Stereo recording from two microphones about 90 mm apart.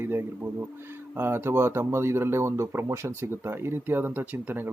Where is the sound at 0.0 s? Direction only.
25° right (ahead or behind).